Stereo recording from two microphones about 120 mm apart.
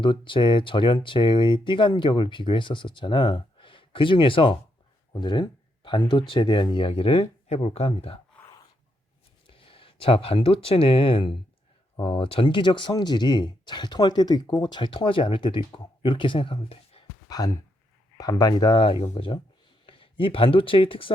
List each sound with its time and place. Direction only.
0.0 s speech: 40° left (ahead or behind)
9.5 s speech: 50° left (ahead or behind)
17.2 s speech: 30° left (ahead or behind)
18.7 s speech: 50° left (ahead or behind)